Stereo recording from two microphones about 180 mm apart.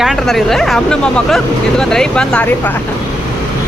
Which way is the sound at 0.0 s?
Centre (ahead or behind).